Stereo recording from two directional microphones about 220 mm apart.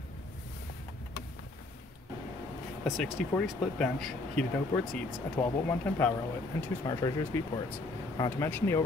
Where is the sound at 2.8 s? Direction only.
Centre (ahead or behind).